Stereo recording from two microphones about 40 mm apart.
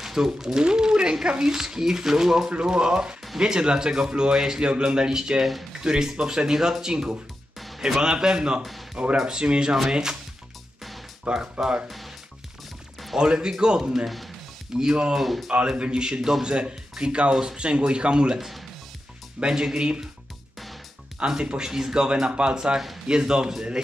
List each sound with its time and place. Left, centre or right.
0.0 s speech: centre
2.5 s a man's voice: right
5.4 s speech: centre
5.8 s a man's voice: centre
9.4 s a man's voice: right
11.3 s a man's voice: right
13.2 s a man's voice: right
14.0 s speech: centre
14.8 s a man's voice: centre
15.1 s speech: centre
15.5 s a man's voice: right
19.4 s a man's voice: centre
21.5 s a man's voice: centre